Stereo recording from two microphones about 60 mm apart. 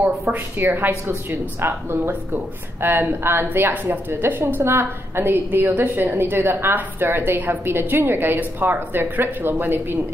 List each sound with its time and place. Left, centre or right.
0.7 s a woman's voice: right
4.1 s a woman's voice: right